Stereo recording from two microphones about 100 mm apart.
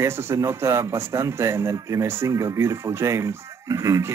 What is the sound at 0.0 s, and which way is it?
Speech, 25° right (ahead or behind).